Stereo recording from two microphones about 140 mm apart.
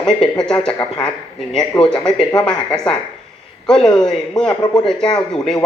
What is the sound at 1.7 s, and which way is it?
Speech, 30° left (ahead or behind).